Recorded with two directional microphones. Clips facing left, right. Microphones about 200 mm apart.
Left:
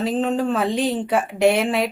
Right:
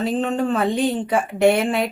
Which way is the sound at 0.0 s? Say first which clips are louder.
Even; centre (ahead or behind).